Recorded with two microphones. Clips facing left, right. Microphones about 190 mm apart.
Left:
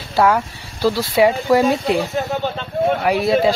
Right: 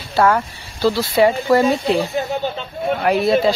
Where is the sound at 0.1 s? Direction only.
5° left (ahead or behind).